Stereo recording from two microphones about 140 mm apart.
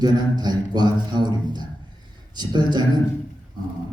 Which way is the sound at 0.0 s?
30° right (ahead or behind).